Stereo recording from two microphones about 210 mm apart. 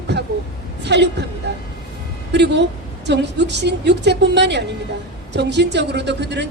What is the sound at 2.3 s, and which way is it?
A woman's voice, 55° right (ahead or behind).